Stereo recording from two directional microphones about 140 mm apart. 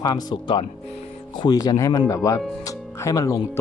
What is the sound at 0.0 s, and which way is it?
Speech, 30° left (ahead or behind).